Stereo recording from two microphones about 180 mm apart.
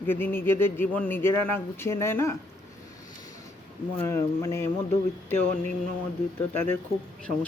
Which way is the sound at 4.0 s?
15° left (ahead or behind).